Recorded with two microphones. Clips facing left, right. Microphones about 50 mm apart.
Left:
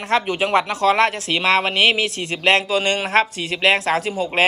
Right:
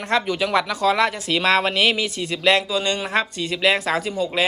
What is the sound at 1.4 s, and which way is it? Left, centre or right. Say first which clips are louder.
Speech: left 1 dB; left.